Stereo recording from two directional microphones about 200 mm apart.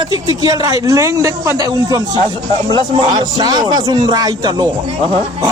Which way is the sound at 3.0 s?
25° right (ahead or behind).